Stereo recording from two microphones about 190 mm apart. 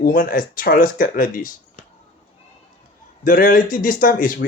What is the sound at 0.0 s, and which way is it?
Speech, 50° left (ahead or behind).